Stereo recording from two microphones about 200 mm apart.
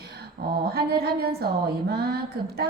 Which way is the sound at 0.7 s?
50° right (ahead or behind).